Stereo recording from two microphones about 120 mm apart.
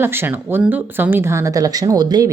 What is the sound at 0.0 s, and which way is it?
Speech, 20° right (ahead or behind).